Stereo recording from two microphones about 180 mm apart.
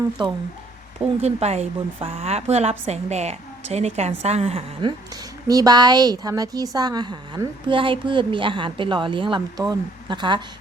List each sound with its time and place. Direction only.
0.2 s a woman's voice: 25° right (ahead or behind)
1.2 s a woman's voice: 35° right (ahead or behind)